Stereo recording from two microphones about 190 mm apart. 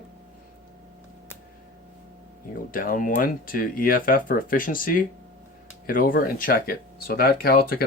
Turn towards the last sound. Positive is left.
turn(degrees=50)  # may be behind; listen again after turning